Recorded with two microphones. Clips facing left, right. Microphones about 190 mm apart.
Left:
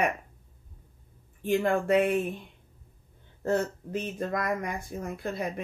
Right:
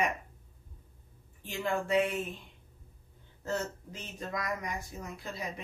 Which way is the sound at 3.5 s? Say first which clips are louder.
Left 7 dB; 60° left (ahead or behind).